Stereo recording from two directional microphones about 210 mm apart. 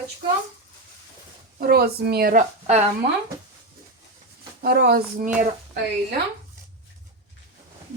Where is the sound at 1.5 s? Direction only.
45° right (ahead or behind).